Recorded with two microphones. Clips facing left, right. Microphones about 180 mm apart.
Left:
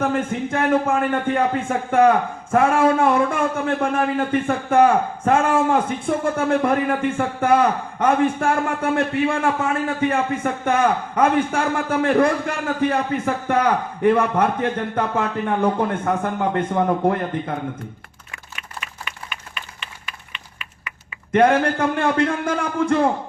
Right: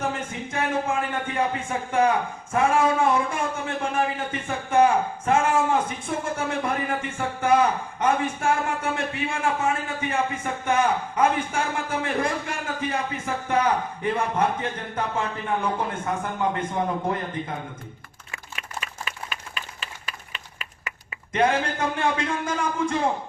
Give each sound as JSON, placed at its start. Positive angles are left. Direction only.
{"t": 0.0, "sound": "a man's voice", "side_deg": 55}
{"t": 18.8, "sound": "a sound", "side_deg": -35}
{"t": 21.3, "sound": "a man's voice", "side_deg": 60}